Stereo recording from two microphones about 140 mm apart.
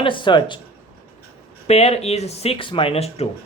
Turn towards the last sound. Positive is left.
turn(degrees=45)  # may be behind; listen again after turning